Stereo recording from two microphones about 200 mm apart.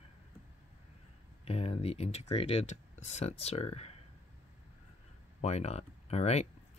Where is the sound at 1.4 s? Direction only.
30° left (ahead or behind).